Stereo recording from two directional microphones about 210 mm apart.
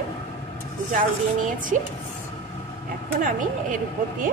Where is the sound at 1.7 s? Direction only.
35° right (ahead or behind).